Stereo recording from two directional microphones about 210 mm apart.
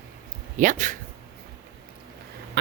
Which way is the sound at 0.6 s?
35° right (ahead or behind).